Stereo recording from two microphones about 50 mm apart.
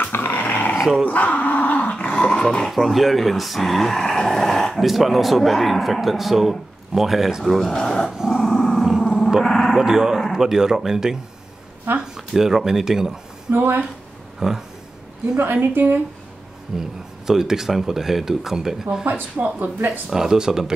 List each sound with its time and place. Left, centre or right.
0.1 s dog: left
0.7 s dog: centre
1.0 s dog: left; by 2.7 s centre
2.7 s speech: centre
8.3 s dog: centre
9.4 s a sound: centre
9.8 s speech: centre
12.4 s speech: centre
13.5 s a woman's voice: right
14.4 s speech: centre
15.3 s a woman's voice: right
17.3 s speech: centre
19.4 s speech: right
20.1 s speech: centre